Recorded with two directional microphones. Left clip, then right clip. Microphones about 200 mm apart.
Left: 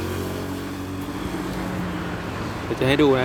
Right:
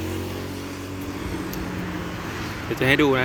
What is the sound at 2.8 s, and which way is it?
Speech, centre (ahead or behind).